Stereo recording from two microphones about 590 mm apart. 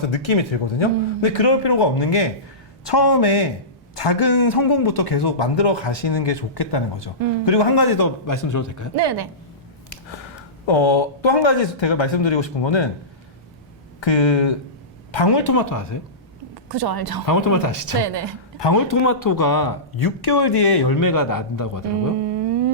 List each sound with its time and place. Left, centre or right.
0.1 s a man's voice: left
9.0 s a woman's voice: right
10.7 s speech: left
14.0 s a man's voice: left
16.6 s a woman's voice: right
17.2 s a man's voice: left
18.0 s a woman's voice: right
18.6 s a man's voice: left